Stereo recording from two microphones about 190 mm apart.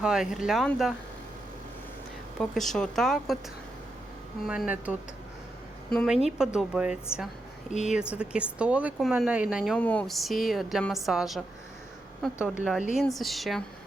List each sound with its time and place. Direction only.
0.0 s a woman's voice: 5° right (ahead or behind)
2.4 s a woman's voice: centre (ahead or behind)
4.4 s a woman's voice: 5° right (ahead or behind)
7.7 s speech: 35° left (ahead or behind)
8.1 s a woman's voice: 5° right (ahead or behind)
9.7 s a woman's voice: 5° left (ahead or behind)